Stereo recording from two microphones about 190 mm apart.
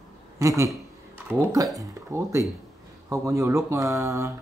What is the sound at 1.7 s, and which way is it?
Speech, 15° right (ahead or behind).